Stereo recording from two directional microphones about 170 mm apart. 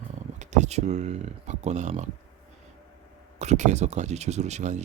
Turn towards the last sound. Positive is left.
turn(degrees=-45)  # may be behind; listen again after turning